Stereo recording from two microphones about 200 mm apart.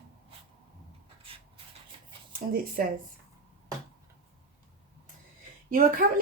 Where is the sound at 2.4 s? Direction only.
45° right (ahead or behind).